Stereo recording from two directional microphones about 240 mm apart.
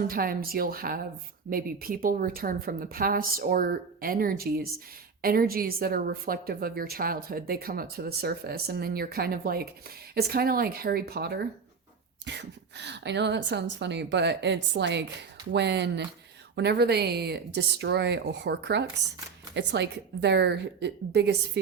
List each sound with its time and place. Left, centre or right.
0.0 s a woman's voice: right